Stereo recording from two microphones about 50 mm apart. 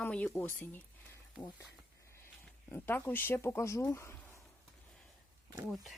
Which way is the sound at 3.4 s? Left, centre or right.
Left.